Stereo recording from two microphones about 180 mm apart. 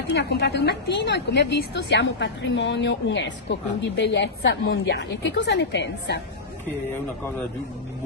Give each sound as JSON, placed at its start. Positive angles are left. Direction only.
{"t": 0.0, "sound": "a woman's voice", "side_deg": 70}